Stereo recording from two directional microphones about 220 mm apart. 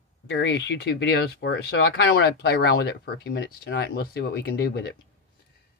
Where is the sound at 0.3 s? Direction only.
50° left (ahead or behind).